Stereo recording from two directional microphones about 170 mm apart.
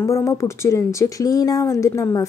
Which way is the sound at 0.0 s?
15° left (ahead or behind).